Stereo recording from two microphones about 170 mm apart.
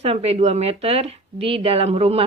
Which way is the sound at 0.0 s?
35° right (ahead or behind).